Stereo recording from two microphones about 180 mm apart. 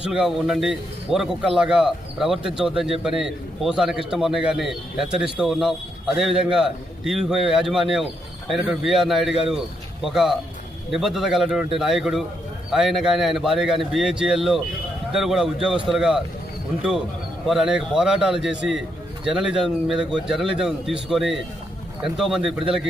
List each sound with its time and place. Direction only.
0.0 s a man's voice: 5° right (ahead or behind)
17.4 s a man's voice: centre (ahead or behind)